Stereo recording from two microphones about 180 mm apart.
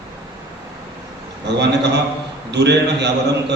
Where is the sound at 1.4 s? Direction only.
70° right (ahead or behind).